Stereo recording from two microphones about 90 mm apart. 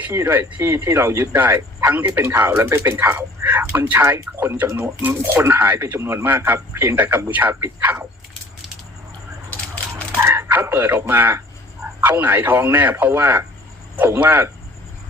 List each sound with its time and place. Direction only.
0.0 s speech: 25° right (ahead or behind)
10.2 s a sound: 25° right (ahead or behind)
11.9 s speech: 20° right (ahead or behind)